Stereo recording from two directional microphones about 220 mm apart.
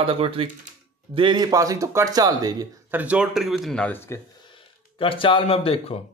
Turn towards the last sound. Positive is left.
turn(degrees=25)  # may be behind; listen again after turning